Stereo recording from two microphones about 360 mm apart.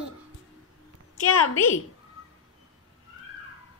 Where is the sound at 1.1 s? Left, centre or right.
Left.